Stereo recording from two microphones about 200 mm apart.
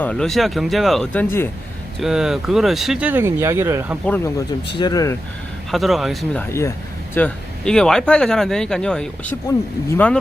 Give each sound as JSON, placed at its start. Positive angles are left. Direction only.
{"t": 0.0, "sound": "speech", "side_deg": 5}
{"t": 2.0, "sound": "speech", "side_deg": 0}
{"t": 4.8, "sound": "speech", "side_deg": 20}
{"t": 5.7, "sound": "speech", "side_deg": 0}
{"t": 6.5, "sound": "speech", "side_deg": 15}